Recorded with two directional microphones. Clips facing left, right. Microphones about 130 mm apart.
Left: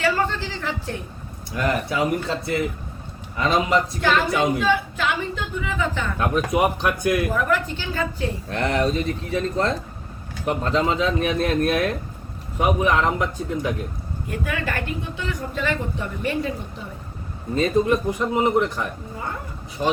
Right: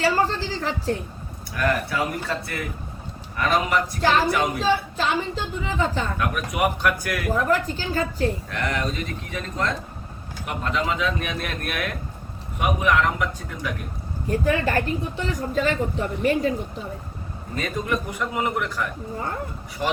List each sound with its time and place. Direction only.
0.0 s a woman's voice: 35° right (ahead or behind)
1.5 s a man's voice: 25° left (ahead or behind)
4.5 s speech: 30° right (ahead or behind)
6.1 s a man's voice: 25° left (ahead or behind)
7.3 s speech: 35° right (ahead or behind)
8.4 s a man's voice: 30° left (ahead or behind)
14.3 s speech: 35° right (ahead or behind)
17.5 s a man's voice: 25° left (ahead or behind)